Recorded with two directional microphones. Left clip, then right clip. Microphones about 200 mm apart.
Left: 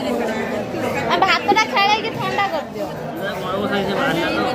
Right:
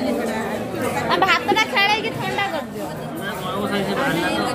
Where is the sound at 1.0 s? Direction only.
15° right (ahead or behind).